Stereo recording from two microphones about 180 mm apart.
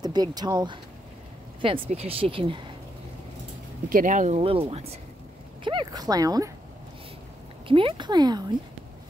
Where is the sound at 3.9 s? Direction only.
50° right (ahead or behind).